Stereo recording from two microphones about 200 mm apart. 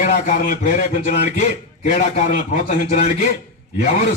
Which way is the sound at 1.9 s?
40° left (ahead or behind).